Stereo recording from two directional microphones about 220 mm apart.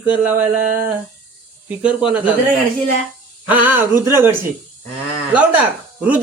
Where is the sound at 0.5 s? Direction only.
40° right (ahead or behind).